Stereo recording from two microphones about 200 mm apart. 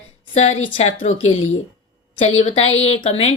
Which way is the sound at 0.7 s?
35° left (ahead or behind).